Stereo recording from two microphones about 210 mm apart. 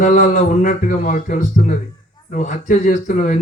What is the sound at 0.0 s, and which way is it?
Speech, 35° left (ahead or behind).